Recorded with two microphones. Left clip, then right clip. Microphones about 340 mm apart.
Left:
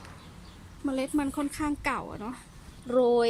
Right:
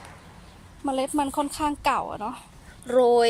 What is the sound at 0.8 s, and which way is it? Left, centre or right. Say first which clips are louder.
A woman's voice: right 5 dB; centre.